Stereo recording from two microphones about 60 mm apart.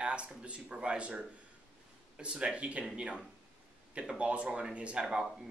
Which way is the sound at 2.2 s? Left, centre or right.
Centre.